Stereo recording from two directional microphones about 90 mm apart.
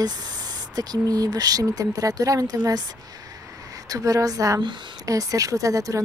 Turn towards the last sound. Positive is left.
turn(degrees=-40)  # may be behind; listen again after turning